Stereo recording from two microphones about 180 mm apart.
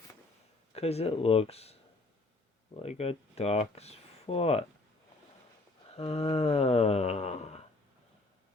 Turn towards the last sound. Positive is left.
turn(degrees=35)  # may be behind; listen again after turning